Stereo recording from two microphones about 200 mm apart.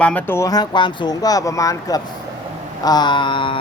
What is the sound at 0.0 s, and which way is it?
Speech, 10° left (ahead or behind).